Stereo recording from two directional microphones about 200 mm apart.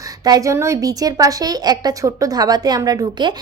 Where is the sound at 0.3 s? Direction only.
15° right (ahead or behind).